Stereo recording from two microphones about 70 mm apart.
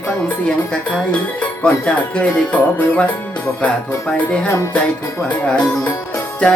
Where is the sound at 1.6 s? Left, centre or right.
Centre.